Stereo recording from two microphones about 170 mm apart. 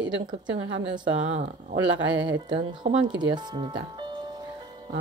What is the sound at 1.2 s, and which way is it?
Speech, 45° right (ahead or behind).